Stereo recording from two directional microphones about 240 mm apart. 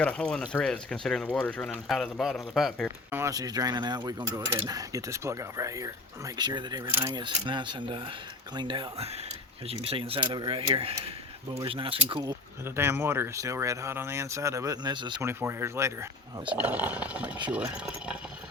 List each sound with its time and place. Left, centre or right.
0.0 s speech: centre
3.1 s speech: centre